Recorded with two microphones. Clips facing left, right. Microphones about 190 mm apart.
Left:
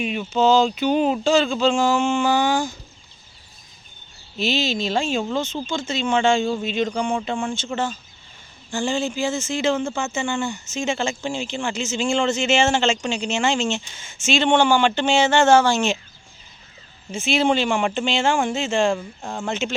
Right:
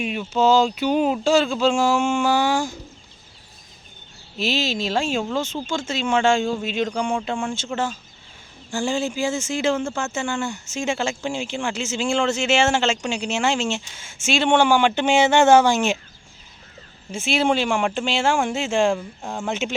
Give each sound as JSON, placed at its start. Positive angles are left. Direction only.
{"t": 0.0, "sound": "speech", "side_deg": 0}
{"t": 4.4, "sound": "speech", "side_deg": -5}
{"t": 6.4, "sound": "speech", "side_deg": 0}
{"t": 17.1, "sound": "speech", "side_deg": -5}